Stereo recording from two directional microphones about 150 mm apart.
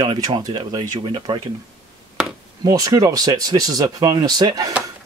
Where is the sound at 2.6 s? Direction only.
25° right (ahead or behind).